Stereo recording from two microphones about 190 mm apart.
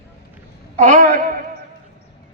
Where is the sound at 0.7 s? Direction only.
40° right (ahead or behind).